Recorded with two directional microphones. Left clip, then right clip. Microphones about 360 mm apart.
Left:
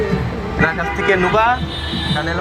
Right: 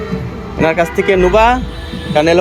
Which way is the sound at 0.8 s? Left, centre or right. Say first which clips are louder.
Right 4 dB; centre.